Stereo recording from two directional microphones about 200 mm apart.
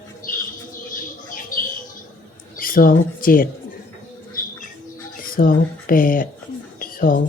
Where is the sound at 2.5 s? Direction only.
45° left (ahead or behind).